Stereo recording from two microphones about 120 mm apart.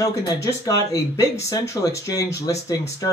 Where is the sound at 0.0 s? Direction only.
30° left (ahead or behind).